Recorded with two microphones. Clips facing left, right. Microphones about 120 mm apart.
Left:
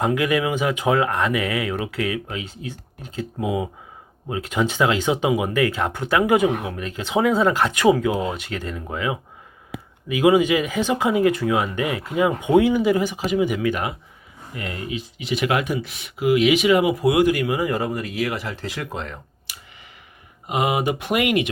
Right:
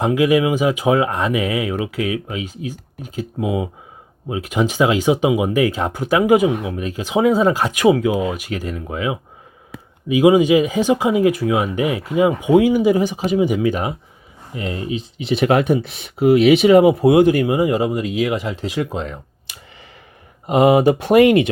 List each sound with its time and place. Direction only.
0.0 s speech: 15° right (ahead or behind)
20.5 s speech: 40° right (ahead or behind)